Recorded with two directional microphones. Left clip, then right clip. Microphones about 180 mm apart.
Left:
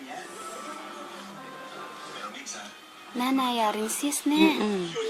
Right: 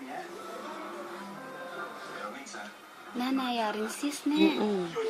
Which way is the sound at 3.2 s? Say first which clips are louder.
Left 5 dB; 30° left (ahead or behind).